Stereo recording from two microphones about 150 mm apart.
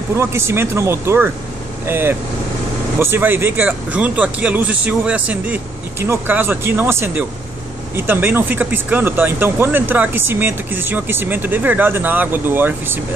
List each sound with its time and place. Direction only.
0.1 s speech: 20° right (ahead or behind)